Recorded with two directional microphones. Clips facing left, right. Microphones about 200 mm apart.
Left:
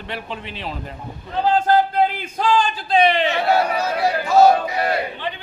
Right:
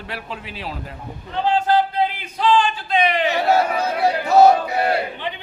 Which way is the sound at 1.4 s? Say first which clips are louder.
Left 1 dB; 45° left (ahead or behind).